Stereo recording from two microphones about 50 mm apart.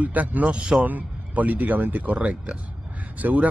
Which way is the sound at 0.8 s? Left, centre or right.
Right.